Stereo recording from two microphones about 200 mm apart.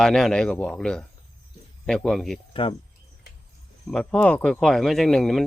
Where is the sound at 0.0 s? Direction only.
Centre (ahead or behind).